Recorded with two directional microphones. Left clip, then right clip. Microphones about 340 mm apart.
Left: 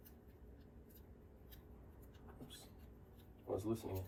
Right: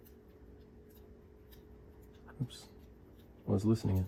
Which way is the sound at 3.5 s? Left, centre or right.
Right.